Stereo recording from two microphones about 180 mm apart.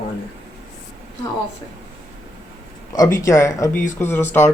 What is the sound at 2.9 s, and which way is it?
Speech, 15° left (ahead or behind).